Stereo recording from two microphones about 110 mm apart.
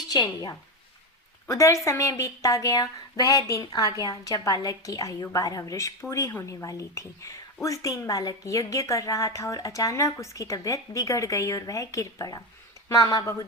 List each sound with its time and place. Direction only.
0.1 s a woman's voice: 40° left (ahead or behind)